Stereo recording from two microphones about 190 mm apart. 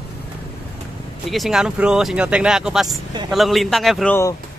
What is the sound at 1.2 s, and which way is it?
A man's voice, centre (ahead or behind).